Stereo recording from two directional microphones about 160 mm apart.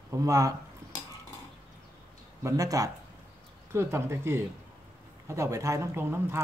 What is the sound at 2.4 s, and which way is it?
Speech, 20° right (ahead or behind).